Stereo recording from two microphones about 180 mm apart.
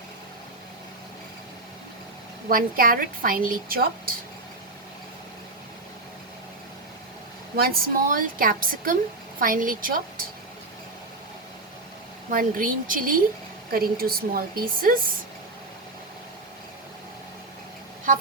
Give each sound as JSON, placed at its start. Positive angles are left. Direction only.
{"t": 2.5, "sound": "a woman's voice", "side_deg": -55}
{"t": 7.5, "sound": "a woman's voice", "side_deg": -55}
{"t": 12.3, "sound": "a woman's voice", "side_deg": -50}